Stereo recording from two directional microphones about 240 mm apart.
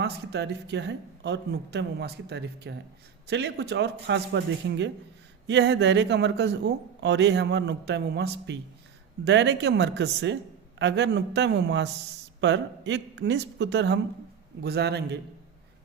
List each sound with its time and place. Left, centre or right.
0.0 s a man's voice: right